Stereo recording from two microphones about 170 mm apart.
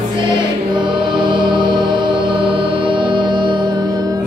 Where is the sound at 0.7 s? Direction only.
25° right (ahead or behind).